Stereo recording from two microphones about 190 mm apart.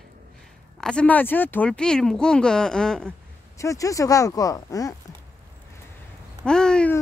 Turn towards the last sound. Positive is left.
turn(degrees=5)  # may be behind; listen again after turning